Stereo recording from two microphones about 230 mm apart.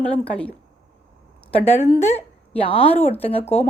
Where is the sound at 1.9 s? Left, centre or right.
Left.